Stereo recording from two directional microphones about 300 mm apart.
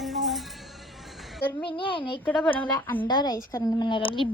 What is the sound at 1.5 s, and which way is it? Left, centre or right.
Speech, centre.